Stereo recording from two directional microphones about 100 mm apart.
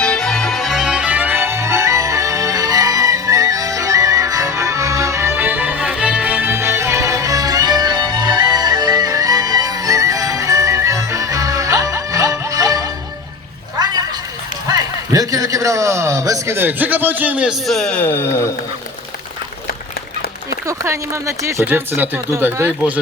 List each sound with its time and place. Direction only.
0.0 s music: 10° left (ahead or behind); by 12.9 s 35° right (ahead or behind)
14.7 s a sound: 35° right (ahead or behind); by 17.6 s 10° right (ahead or behind)
17.7 s speech: 5° left (ahead or behind)
18.0 s speech: 25° left (ahead or behind)
20.7 s speech: 30° right (ahead or behind)